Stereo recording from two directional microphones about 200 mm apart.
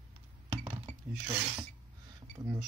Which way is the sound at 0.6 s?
25° right (ahead or behind).